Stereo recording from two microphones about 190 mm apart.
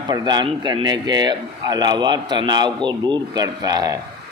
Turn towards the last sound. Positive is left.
turn(degrees=-20)  # may be behind; listen again after turning